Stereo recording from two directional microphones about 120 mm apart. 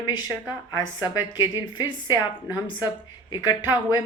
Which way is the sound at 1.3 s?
40° left (ahead or behind).